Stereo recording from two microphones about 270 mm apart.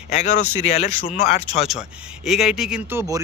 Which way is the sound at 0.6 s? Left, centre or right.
Left.